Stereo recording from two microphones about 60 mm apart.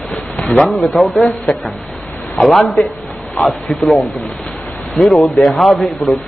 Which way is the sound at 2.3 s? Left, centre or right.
Centre.